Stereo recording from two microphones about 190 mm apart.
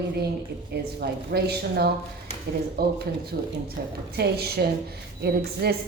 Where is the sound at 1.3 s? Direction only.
55° right (ahead or behind).